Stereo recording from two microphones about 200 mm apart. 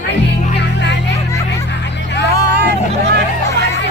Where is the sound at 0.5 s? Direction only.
60° left (ahead or behind).